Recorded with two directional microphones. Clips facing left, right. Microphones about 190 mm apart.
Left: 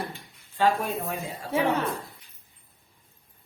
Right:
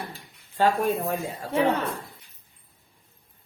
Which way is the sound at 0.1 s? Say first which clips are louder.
Left 1 dB; 45° right (ahead or behind).